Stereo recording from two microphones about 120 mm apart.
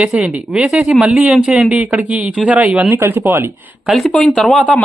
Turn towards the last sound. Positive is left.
turn(degrees=5)  # may be behind; listen again after turning